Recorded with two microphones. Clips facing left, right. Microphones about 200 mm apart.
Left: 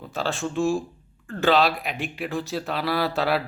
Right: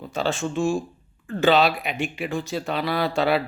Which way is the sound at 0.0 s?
Centre (ahead or behind).